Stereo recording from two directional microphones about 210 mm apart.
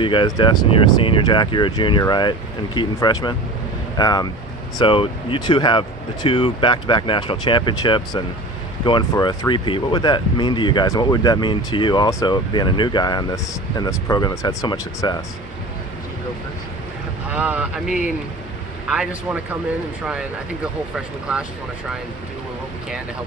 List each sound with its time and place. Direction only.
0.0 s speech: 25° left (ahead or behind)
17.3 s speech: 5° right (ahead or behind)